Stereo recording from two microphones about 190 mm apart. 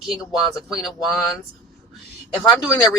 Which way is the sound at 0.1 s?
Centre (ahead or behind).